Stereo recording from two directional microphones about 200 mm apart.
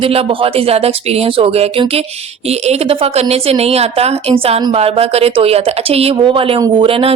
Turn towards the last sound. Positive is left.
turn(degrees=-25)  # may be behind; listen again after turning